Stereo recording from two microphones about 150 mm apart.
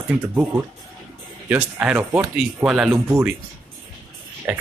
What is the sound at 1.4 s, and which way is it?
Speech, 10° right (ahead or behind).